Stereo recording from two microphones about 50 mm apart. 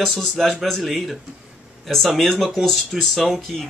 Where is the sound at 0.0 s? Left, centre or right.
Centre.